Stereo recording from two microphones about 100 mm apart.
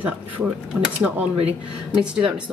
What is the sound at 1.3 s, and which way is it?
Speech, 80° right.